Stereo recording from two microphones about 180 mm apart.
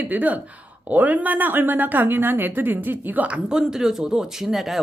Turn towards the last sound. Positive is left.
turn(degrees=0)  # may be behind; listen again after turning